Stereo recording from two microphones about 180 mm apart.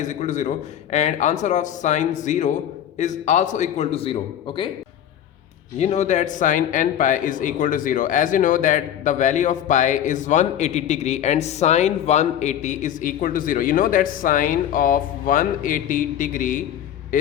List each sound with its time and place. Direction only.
0.0 s a man's voice: 40° left (ahead or behind)
5.8 s a man's voice: 40° left (ahead or behind)